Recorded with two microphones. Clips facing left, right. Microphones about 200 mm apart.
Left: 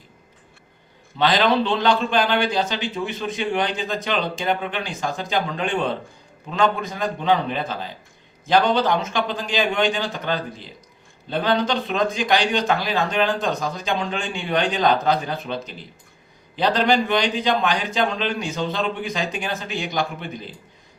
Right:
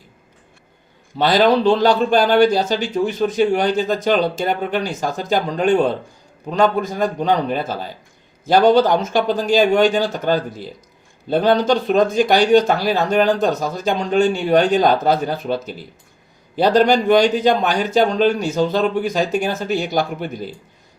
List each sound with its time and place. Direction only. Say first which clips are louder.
1.2 s a man's voice: right 5 dB; 45° right (ahead or behind)
15.3 s speech: right 6 dB; 5° right (ahead or behind)
16.6 s a man's voice: right 5 dB; 45° right (ahead or behind)